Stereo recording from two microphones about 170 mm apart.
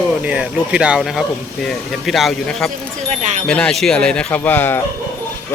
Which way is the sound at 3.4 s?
5° left (ahead or behind).